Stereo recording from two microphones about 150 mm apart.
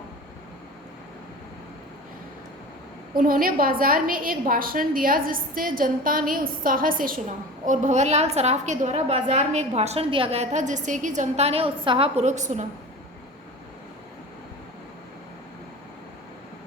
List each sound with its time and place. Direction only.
3.2 s a woman's voice: 70° right (ahead or behind)
7.6 s a woman's voice: 55° right (ahead or behind)